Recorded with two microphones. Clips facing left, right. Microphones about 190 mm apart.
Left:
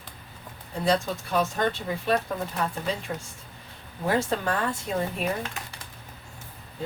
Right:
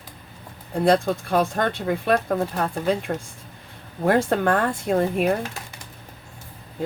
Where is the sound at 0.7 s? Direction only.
55° right (ahead or behind).